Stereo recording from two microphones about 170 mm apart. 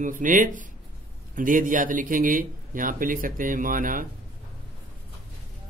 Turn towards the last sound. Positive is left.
turn(degrees=-55)  # may be behind; listen again after turning